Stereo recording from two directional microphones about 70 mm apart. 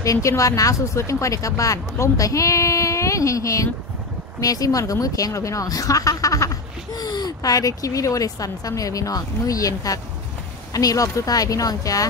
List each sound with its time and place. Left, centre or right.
0.0 s a woman's voice: left